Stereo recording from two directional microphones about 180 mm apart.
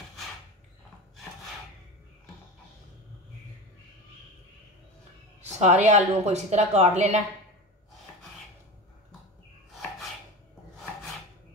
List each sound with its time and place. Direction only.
5.4 s speech: 40° right (ahead or behind)